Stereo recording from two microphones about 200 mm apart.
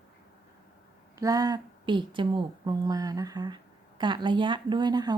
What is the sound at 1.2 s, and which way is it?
Speech, 20° right (ahead or behind).